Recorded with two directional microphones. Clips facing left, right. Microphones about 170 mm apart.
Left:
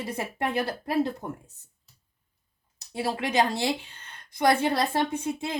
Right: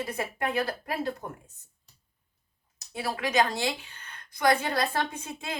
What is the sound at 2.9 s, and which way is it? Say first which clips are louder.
A woman's voice: left 1 dB; 25° left (ahead or behind).